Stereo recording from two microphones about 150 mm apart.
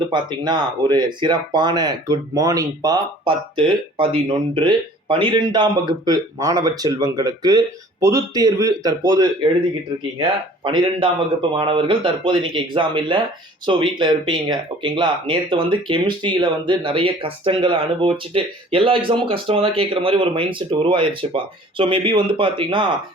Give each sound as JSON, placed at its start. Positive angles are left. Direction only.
{"t": 0.0, "sound": "speech", "side_deg": -30}